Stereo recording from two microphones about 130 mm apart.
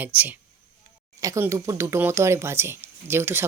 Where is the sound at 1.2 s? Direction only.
25° right (ahead or behind).